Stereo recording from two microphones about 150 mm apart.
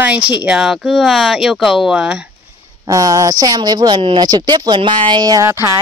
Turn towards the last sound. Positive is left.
turn(degrees=-20)  # may be behind; listen again after turning